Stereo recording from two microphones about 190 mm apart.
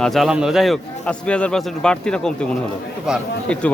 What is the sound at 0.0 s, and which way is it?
Speech, centre (ahead or behind).